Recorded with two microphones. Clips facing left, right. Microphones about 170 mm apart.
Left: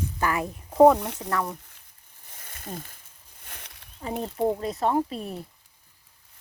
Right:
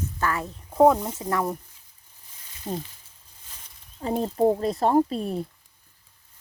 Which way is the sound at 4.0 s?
30° right (ahead or behind).